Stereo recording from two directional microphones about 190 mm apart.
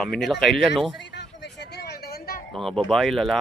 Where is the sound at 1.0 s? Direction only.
65° left (ahead or behind).